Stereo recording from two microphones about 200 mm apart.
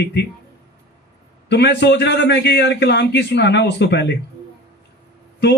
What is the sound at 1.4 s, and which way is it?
A man's voice, 55° left (ahead or behind).